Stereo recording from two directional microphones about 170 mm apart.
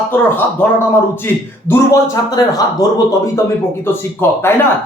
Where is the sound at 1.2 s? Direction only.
15° left (ahead or behind).